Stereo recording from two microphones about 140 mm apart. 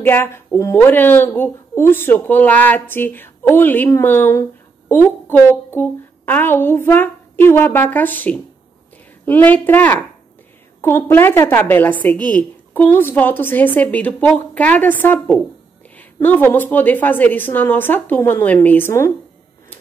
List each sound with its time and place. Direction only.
0.0 s speech: 15° left (ahead or behind)